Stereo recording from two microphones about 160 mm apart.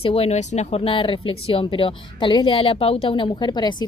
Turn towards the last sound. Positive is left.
turn(degrees=25)  # may be behind; listen again after turning